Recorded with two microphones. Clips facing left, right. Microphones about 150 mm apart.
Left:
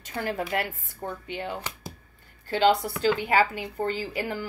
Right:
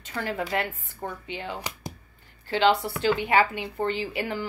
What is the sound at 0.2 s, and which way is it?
A woman's voice, 45° left (ahead or behind).